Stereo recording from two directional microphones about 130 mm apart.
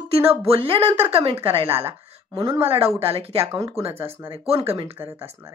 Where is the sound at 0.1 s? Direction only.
50° right (ahead or behind).